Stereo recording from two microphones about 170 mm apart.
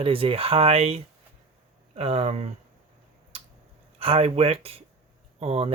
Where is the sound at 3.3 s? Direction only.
35° right (ahead or behind).